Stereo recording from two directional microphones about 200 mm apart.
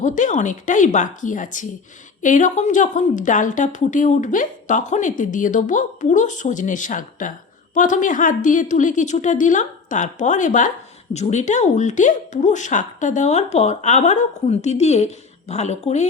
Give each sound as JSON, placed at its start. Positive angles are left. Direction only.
{"t": 0.0, "sound": "a woman's voice", "side_deg": 40}